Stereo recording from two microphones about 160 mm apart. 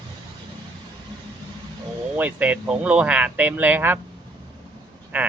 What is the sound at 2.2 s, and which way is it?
Speech, 10° right (ahead or behind).